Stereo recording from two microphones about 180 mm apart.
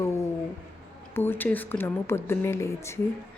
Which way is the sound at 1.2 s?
10° left (ahead or behind).